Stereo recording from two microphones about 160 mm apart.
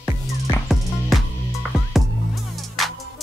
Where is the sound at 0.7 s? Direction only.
Centre (ahead or behind).